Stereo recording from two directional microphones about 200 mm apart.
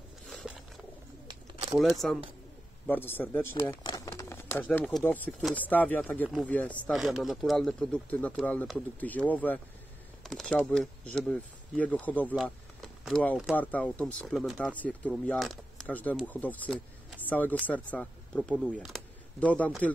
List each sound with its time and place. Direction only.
0.3 s wild animals: centre (ahead or behind)
1.2 s bird: 25° right (ahead or behind)
1.8 s speech: centre (ahead or behind)